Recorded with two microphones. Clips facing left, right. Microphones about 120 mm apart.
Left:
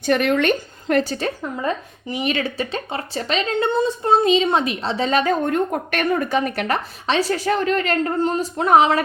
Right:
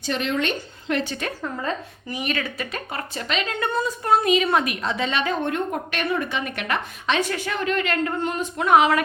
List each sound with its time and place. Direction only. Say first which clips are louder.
0.0 s a woman's voice: left 7 dB; 60° left (ahead or behind); by 1.3 s 35° left (ahead or behind)
2.3 s a woman's voice: left 5 dB; 30° left (ahead or behind)